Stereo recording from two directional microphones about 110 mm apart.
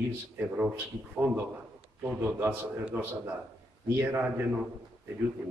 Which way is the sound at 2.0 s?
20° right (ahead or behind).